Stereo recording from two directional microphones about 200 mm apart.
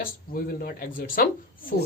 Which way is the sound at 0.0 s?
45° left (ahead or behind).